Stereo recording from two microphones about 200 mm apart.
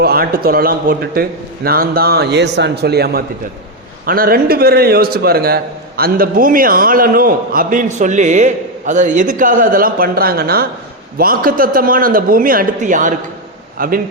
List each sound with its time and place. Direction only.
0.0 s a man's voice: 50° right (ahead or behind)